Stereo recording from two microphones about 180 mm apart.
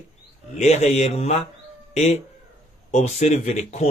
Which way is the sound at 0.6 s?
40° left (ahead or behind).